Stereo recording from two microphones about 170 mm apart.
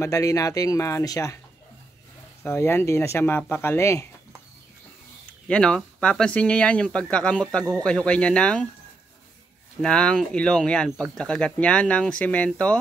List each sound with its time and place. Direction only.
0.0 s speech: 20° left (ahead or behind)
2.4 s speech: 15° left (ahead or behind)
5.5 s speech: 5° left (ahead or behind)
9.8 s speech: 5° left (ahead or behind)